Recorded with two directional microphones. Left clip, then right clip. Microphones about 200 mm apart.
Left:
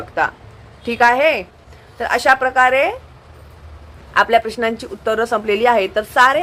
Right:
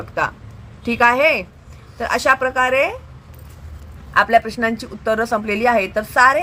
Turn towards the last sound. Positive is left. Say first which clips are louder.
# left 1 dB
turn(degrees=-15)  # may be behind; listen again after turning